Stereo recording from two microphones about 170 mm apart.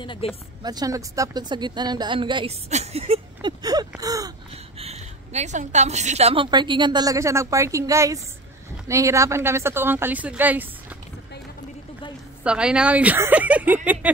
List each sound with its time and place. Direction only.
0.0 s a woman's voice: 30° left (ahead or behind)
0.6 s a woman's voice: 25° right (ahead or behind)
3.4 s a woman's voice: 20° right (ahead or behind)
4.7 s a woman's voice: 40° right (ahead or behind); by 10.7 s 10° right (ahead or behind)
12.4 s speech: 5° right (ahead or behind)
14.0 s a sound: 10° right (ahead or behind)